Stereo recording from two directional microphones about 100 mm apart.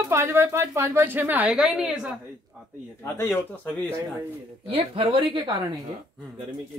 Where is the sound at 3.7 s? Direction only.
10° left (ahead or behind).